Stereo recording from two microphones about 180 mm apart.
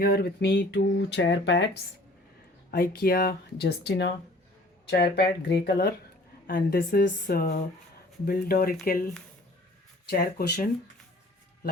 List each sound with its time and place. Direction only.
0.0 s speech: 55° left (ahead or behind); by 1.7 s 75° left (ahead or behind)
2.7 s speech: 60° left (ahead or behind)
10.1 s speech: 60° left (ahead or behind)